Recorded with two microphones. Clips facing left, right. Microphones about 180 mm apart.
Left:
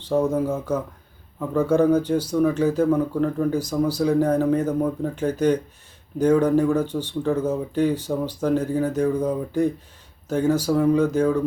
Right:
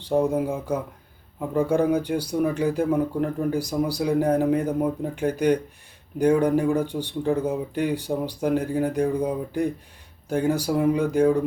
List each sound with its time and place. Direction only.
0.0 s speech: 15° right (ahead or behind)